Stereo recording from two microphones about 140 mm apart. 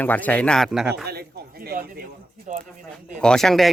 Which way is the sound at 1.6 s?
90° right.